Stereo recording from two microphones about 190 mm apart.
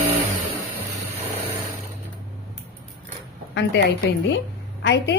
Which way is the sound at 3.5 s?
65° left (ahead or behind).